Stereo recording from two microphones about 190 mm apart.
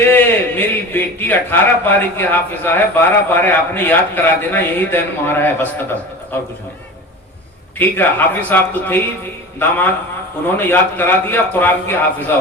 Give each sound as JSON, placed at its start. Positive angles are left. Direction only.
{"t": 0.1, "sound": "a man's voice", "side_deg": 10}
{"t": 7.8, "sound": "a man's voice", "side_deg": 10}